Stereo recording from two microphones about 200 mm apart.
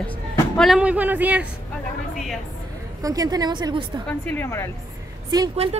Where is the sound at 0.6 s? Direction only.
5° right (ahead or behind).